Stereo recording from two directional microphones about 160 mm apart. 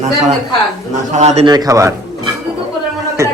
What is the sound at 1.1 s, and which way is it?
Speech, 45° right (ahead or behind).